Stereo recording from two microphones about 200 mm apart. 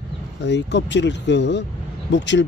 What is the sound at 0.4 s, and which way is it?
Speech, 60° left (ahead or behind).